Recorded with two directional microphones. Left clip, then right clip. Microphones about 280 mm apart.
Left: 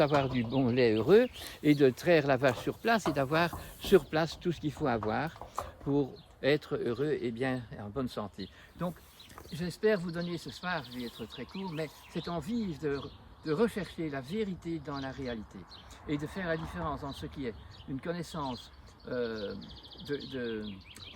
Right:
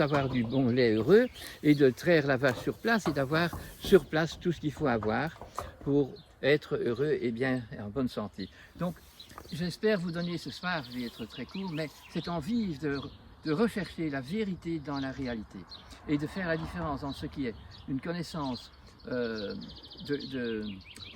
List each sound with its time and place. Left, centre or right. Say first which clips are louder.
0.0 s speech: left 1 dB; left; by 20.8 s centre